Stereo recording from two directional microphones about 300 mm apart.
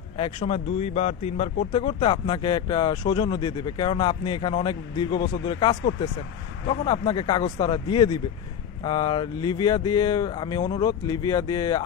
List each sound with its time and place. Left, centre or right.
0.2 s speech: centre